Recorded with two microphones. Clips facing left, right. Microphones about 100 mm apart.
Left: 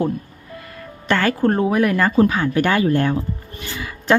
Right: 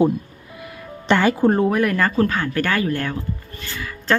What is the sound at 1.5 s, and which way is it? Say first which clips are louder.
Speech: left 3 dB; centre (ahead or behind).